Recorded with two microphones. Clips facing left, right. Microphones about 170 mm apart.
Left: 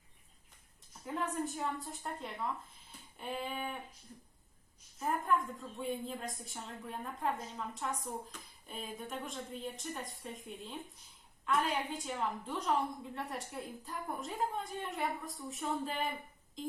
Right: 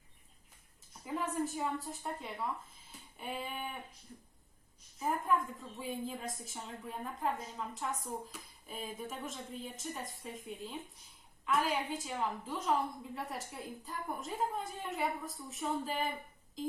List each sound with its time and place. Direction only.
1.0 s a woman's voice: centre (ahead or behind)
4.9 s a woman's voice: centre (ahead or behind)